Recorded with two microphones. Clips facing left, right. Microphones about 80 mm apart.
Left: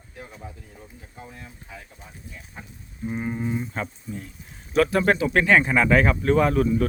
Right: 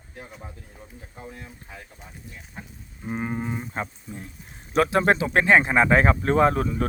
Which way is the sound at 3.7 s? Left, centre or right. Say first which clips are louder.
Left 1 dB; right.